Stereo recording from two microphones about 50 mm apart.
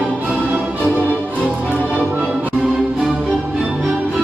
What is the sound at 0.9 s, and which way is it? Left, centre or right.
Music, right.